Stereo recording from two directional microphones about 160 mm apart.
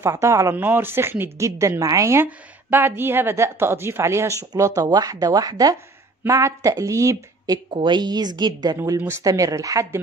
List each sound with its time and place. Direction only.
0.0 s speech: 20° right (ahead or behind)